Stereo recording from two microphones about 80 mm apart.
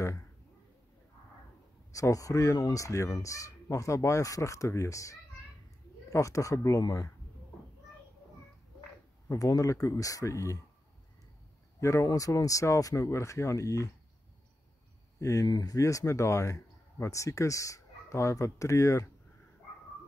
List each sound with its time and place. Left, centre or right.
1.9 s speech: left
9.3 s speech: left
11.8 s speech: left
15.1 s speech: left
15.4 s speech: left